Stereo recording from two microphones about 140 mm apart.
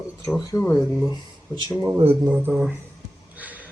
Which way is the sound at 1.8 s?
20° right (ahead or behind).